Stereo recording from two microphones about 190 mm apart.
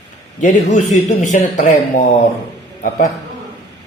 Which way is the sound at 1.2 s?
40° left (ahead or behind).